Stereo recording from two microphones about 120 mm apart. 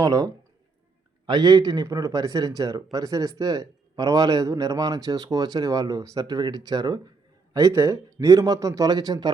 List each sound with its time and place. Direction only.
0.0 s speech: 30° right (ahead or behind)